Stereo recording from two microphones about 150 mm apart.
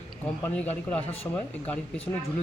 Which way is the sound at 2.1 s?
25° left (ahead or behind).